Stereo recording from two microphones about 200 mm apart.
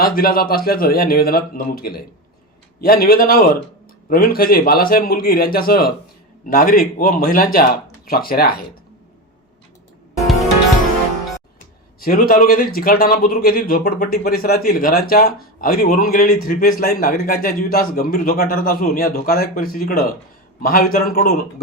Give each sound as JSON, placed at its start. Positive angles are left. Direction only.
{"t": 0.0, "sound": "a man's voice", "side_deg": 50}
{"t": 11.9, "sound": "a man's voice", "side_deg": 45}